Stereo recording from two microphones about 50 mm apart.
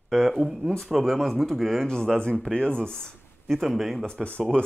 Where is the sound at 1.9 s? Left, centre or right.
Centre.